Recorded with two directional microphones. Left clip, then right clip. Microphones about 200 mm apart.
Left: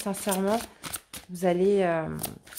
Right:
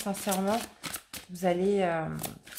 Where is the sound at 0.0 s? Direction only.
40° left (ahead or behind).